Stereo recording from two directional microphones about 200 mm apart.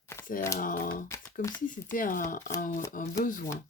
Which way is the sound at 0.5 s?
45° left (ahead or behind).